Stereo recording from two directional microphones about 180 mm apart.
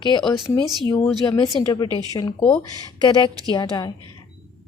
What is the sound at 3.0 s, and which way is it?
Speech, 25° left (ahead or behind).